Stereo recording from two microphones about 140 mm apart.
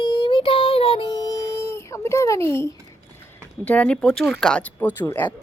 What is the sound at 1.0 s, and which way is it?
A child's voice, 25° left (ahead or behind).